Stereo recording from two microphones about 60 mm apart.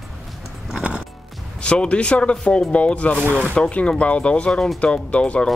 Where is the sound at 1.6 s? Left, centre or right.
Centre.